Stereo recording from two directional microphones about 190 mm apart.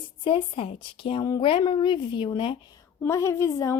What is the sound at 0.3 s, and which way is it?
A woman's voice, 25° left (ahead or behind).